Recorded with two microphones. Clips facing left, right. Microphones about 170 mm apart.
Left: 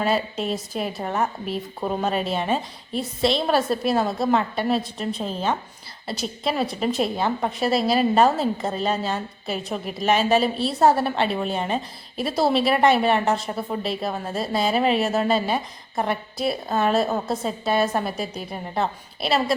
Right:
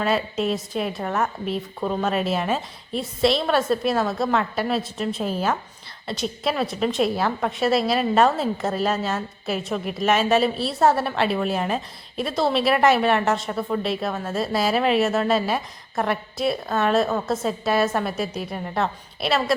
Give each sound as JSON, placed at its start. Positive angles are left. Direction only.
{"t": 0.0, "sound": "a woman's voice", "side_deg": 0}
{"t": 1.8, "sound": "speech", "side_deg": 15}
{"t": 2.0, "sound": "a woman's voice", "side_deg": 0}